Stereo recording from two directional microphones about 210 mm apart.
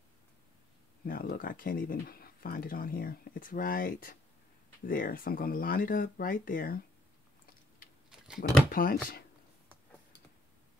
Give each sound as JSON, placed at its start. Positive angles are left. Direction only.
{"t": 1.0, "sound": "speech", "side_deg": 45}
{"t": 8.4, "sound": "speech", "side_deg": 45}